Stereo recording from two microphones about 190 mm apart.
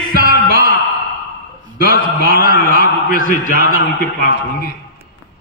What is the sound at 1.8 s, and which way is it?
A man's voice, 50° left (ahead or behind).